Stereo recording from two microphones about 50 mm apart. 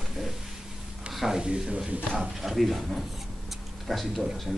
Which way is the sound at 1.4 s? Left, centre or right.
Centre.